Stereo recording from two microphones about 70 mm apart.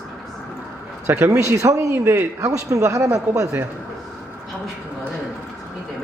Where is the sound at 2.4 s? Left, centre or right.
Right.